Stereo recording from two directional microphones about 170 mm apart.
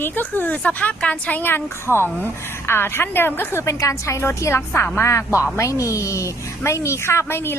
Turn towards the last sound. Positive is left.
turn(degrees=15)  # may be behind; listen again after turning